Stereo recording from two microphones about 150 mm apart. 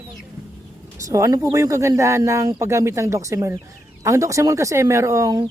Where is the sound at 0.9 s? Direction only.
20° right (ahead or behind).